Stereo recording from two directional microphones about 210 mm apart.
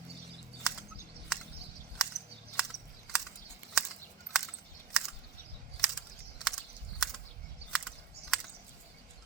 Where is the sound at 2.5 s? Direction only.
Centre (ahead or behind).